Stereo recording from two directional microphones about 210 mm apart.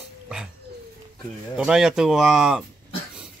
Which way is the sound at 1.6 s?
5° right (ahead or behind).